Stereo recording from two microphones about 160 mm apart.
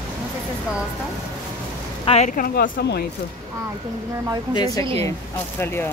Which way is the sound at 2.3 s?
60° left (ahead or behind).